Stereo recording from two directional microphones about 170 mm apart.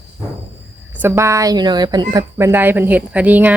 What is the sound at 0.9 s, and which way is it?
A woman's voice, 15° right (ahead or behind).